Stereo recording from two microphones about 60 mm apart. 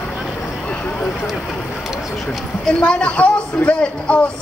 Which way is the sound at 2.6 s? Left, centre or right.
Centre.